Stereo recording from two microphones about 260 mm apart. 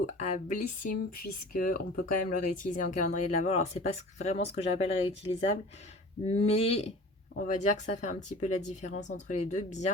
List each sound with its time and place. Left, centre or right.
0.0 s speech: left
0.9 s speech: left
1.5 s speech: left